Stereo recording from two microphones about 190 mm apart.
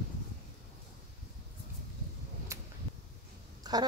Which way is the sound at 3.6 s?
20° right (ahead or behind).